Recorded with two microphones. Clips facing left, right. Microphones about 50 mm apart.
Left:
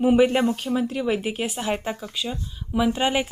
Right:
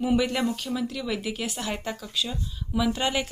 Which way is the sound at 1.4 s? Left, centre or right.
Centre.